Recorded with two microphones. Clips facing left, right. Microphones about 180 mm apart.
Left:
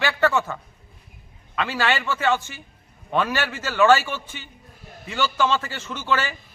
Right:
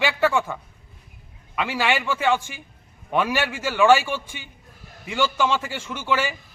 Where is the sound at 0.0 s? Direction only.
10° right (ahead or behind).